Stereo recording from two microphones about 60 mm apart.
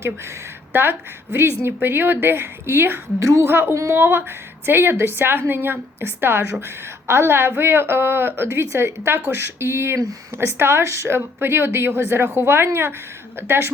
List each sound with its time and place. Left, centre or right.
0.0 s a woman's voice: right
3.2 s a woman's voice: right
3.4 s a woman's voice: right